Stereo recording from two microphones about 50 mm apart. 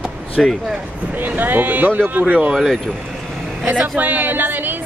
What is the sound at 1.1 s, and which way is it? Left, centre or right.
Speech, right.